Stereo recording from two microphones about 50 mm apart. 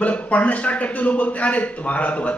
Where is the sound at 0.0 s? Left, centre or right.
Left.